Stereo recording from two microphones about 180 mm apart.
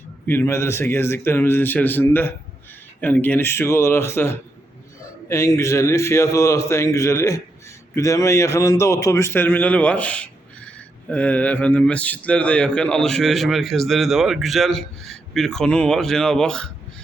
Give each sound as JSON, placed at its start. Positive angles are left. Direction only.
{"t": 0.3, "sound": "a man's voice", "side_deg": 15}